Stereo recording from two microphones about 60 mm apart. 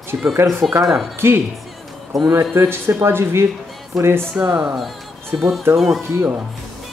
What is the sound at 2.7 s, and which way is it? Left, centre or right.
A man's voice, right.